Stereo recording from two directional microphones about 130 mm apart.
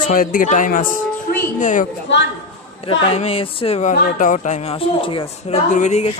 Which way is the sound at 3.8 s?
80° left.